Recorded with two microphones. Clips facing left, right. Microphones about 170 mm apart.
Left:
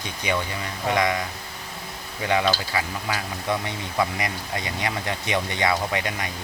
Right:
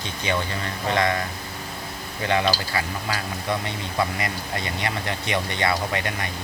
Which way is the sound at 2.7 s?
15° left (ahead or behind).